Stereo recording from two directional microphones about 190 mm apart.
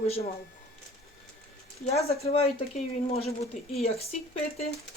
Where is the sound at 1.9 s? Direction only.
35° left (ahead or behind).